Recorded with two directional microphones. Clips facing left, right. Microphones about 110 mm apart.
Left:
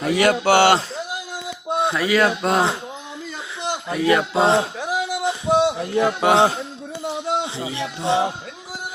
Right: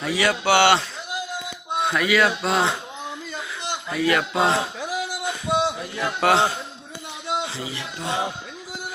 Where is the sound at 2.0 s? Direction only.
40° left (ahead or behind).